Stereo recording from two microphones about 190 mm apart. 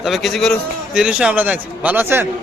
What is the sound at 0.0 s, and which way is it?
A man's voice, centre (ahead or behind).